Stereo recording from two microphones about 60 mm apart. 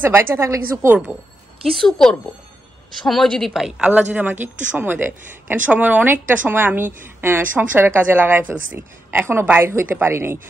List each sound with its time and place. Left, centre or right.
0.0 s a woman's voice: right
1.7 s a woman's voice: centre
3.8 s speech: right
9.2 s a woman's voice: right